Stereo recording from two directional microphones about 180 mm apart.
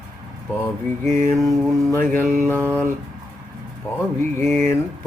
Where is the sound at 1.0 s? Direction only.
15° left (ahead or behind).